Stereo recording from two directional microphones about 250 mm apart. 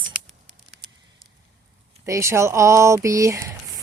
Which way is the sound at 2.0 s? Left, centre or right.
Centre.